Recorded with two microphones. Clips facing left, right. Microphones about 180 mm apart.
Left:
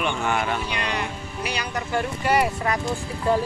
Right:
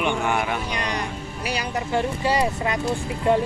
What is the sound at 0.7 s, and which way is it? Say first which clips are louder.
Speech: right 1 dB; 40° right (ahead or behind).